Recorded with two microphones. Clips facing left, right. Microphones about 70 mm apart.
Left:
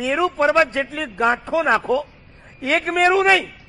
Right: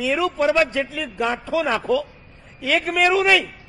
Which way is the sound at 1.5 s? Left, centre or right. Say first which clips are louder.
Left 2 dB; left.